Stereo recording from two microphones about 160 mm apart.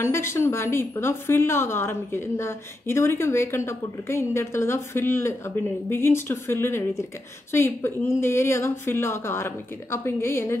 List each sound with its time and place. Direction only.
0.0 s a woman's voice: 15° left (ahead or behind)